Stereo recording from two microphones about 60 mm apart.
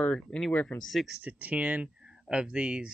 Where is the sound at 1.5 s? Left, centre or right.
Right.